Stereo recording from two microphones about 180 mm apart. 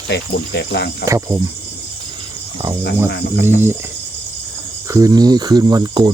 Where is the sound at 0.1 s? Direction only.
70° left (ahead or behind).